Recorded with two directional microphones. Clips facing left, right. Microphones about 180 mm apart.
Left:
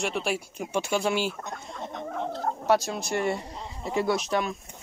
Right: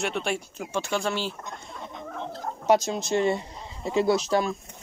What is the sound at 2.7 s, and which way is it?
Speech, 20° right (ahead or behind).